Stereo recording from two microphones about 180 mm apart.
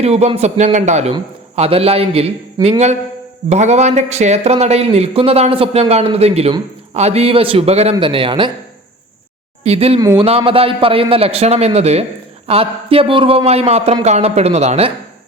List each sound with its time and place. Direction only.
0.0 s a man's voice: 35° right (ahead or behind)
9.6 s speech: 35° right (ahead or behind)
10.0 s speech: 20° right (ahead or behind)
10.2 s speech: 30° right (ahead or behind)